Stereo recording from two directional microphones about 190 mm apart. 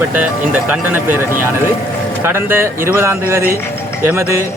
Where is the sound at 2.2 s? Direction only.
10° right (ahead or behind).